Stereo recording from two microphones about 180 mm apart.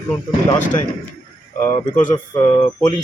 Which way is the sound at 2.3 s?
25° left (ahead or behind).